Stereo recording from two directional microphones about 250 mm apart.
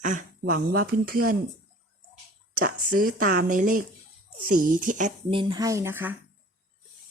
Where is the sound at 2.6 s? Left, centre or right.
Right; by 6.1 s centre.